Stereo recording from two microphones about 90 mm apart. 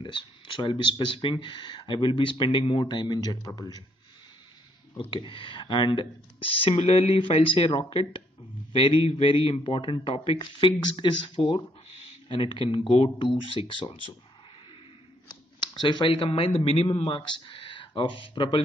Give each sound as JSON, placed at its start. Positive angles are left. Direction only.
{"t": 0.0, "sound": "speech", "side_deg": 65}
{"t": 4.9, "sound": "speech", "side_deg": 65}
{"t": 6.6, "sound": "speech", "side_deg": 85}
{"t": 10.0, "sound": "speech", "side_deg": 90}
{"t": 15.6, "sound": "speech", "side_deg": 55}
{"t": 16.1, "sound": "speech", "side_deg": 90}